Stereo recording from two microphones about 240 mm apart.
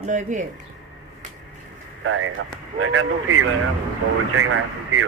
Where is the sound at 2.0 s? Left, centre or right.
Right.